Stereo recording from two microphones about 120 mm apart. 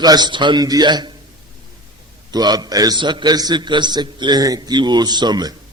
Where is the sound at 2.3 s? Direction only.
35° right (ahead or behind).